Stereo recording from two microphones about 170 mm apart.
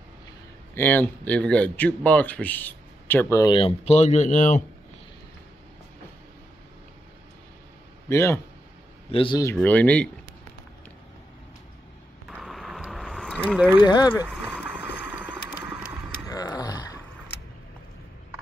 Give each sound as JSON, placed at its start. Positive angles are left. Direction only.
{"t": 0.7, "sound": "speech", "side_deg": 10}
{"t": 3.5, "sound": "speech", "side_deg": 35}
{"t": 8.1, "sound": "speech", "side_deg": 15}
{"t": 9.1, "sound": "speech", "side_deg": 30}
{"t": 9.6, "sound": "speech", "side_deg": 10}
{"t": 12.3, "sound": "a sound", "side_deg": 0}
{"t": 13.8, "sound": "speech", "side_deg": 25}
{"t": 14.2, "sound": "a sound", "side_deg": -5}
{"t": 16.3, "sound": "groan", "side_deg": 20}